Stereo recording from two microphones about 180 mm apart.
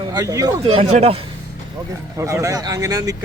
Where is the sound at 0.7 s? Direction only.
35° right (ahead or behind).